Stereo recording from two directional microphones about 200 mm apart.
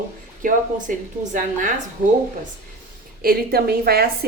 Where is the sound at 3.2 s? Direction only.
50° right (ahead or behind).